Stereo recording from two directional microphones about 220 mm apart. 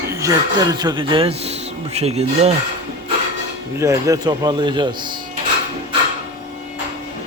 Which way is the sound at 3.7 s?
15° right (ahead or behind).